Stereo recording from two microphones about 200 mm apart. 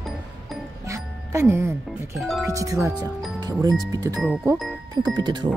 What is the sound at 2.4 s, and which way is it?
Speech, 15° right (ahead or behind).